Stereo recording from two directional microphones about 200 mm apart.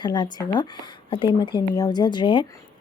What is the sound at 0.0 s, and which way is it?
Speech, 20° left (ahead or behind).